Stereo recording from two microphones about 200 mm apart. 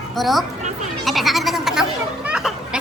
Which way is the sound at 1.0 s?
Centre (ahead or behind).